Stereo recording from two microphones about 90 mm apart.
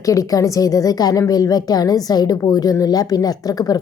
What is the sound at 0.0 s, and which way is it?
A woman's voice, 40° left (ahead or behind).